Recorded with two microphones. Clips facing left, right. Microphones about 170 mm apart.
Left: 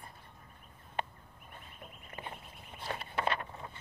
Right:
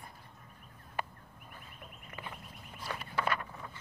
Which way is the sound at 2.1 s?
25° left (ahead or behind).